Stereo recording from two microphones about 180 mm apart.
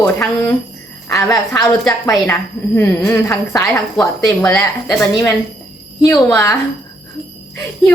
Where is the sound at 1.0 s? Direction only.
20° left (ahead or behind).